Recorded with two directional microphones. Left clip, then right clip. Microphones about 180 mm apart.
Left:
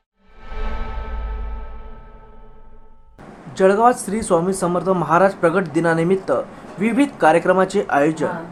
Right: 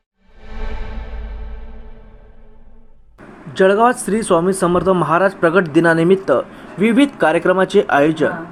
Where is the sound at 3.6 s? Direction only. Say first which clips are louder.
Right 2 dB; 15° right (ahead or behind).